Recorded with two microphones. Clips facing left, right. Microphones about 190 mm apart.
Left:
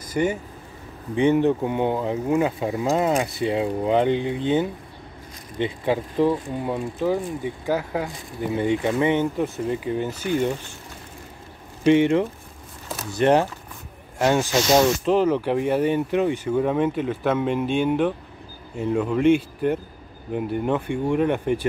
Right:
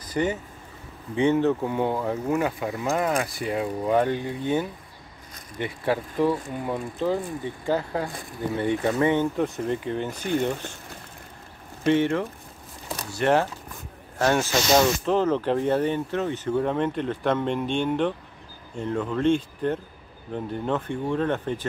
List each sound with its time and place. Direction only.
0.1 s speech: 10° left (ahead or behind)
11.8 s speech: 15° left (ahead or behind)